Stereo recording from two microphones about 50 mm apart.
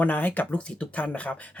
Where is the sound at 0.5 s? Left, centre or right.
Left.